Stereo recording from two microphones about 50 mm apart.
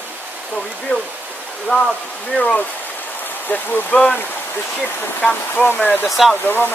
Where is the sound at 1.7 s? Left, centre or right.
Left.